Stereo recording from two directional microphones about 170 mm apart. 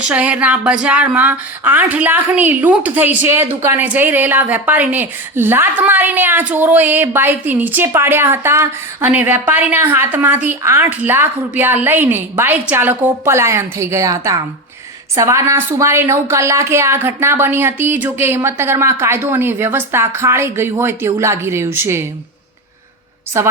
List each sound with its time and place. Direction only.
0.0 s a woman's voice: 5° right (ahead or behind)
23.3 s a woman's voice: 15° right (ahead or behind)